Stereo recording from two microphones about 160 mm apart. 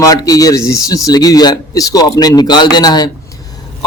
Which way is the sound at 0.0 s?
20° left (ahead or behind).